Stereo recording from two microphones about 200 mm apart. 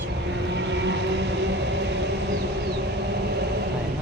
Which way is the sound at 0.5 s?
60° right (ahead or behind).